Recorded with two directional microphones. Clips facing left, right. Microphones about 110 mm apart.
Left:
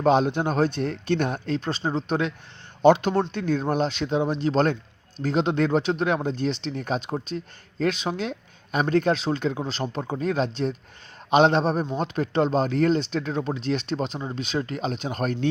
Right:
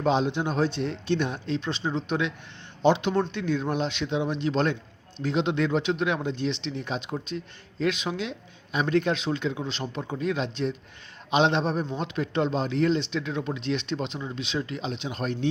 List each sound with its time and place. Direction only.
0.0 s speech: 50° left (ahead or behind)